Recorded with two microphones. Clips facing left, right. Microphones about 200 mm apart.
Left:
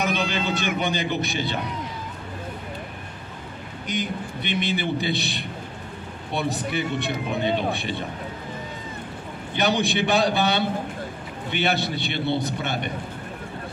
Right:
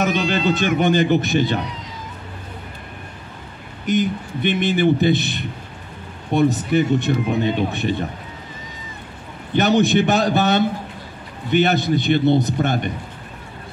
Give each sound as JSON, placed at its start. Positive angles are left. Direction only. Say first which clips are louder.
{"t": 0.3, "sound": "speech", "louder": "right 7 dB", "side_deg": -50}
{"t": 3.8, "sound": "speech", "louder": "right 9 dB", "side_deg": -50}
{"t": 9.6, "sound": "speech", "louder": "right 7 dB", "side_deg": -45}